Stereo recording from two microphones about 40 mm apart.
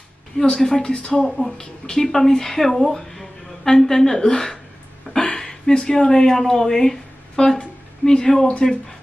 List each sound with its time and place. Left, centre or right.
0.4 s a woman's voice: centre
0.9 s speech: left
1.2 s a woman's voice: centre